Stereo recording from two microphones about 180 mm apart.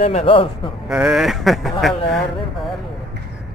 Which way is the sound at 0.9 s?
5° right (ahead or behind).